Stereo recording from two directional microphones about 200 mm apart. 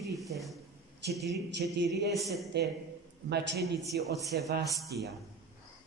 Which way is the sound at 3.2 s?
55° right (ahead or behind).